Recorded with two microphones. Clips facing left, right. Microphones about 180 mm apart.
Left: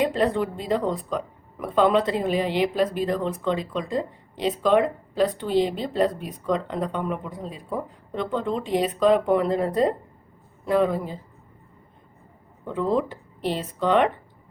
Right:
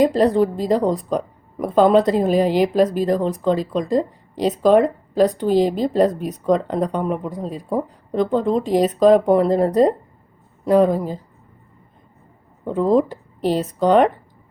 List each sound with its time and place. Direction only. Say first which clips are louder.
0.0 s a woman's voice: right 7 dB; 40° right (ahead or behind)
12.6 s a woman's voice: right 7 dB; 40° right (ahead or behind)